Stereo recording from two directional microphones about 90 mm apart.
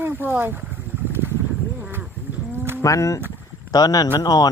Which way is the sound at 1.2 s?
25° right (ahead or behind).